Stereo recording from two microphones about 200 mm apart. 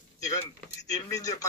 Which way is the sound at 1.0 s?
15° left (ahead or behind).